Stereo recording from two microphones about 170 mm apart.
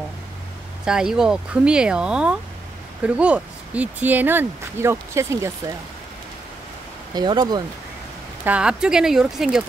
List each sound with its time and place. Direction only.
0.8 s speech: 5° right (ahead or behind)
7.2 s speech: 25° right (ahead or behind)
8.5 s speech: 5° right (ahead or behind)